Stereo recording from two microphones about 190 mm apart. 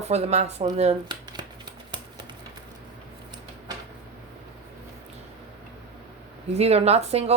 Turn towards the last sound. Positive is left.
turn(degrees=-35)  # may be behind; listen again after turning